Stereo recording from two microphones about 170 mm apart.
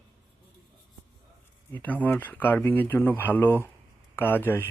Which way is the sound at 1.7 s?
10° left (ahead or behind).